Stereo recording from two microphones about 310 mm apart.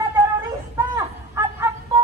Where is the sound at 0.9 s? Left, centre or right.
Centre.